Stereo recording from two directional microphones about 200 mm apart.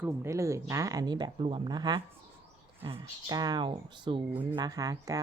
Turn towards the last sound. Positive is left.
turn(degrees=-15)  # may be behind; listen again after turning